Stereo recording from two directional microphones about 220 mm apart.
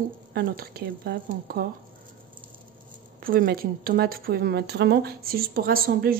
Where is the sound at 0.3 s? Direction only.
45° right (ahead or behind).